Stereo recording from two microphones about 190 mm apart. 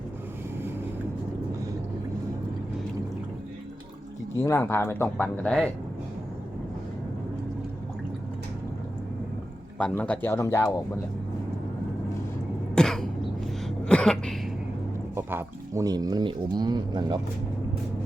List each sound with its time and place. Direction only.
4.4 s speech: 15° left (ahead or behind)
9.7 s speech: 5° left (ahead or behind)
12.7 s throat clearing: 5° left (ahead or behind)
15.1 s speech: 10° right (ahead or behind)